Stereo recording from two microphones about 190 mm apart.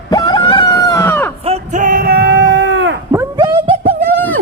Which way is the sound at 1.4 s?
35° right (ahead or behind).